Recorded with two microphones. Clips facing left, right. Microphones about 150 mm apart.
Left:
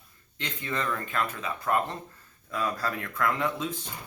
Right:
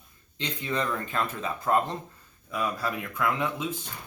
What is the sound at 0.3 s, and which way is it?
Speech, 20° right (ahead or behind).